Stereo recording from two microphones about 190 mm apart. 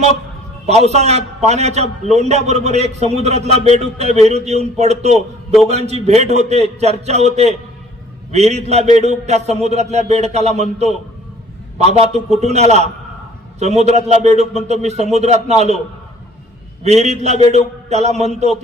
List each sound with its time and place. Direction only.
0.7 s a man's voice: 35° right (ahead or behind)
16.8 s a man's voice: 35° right (ahead or behind)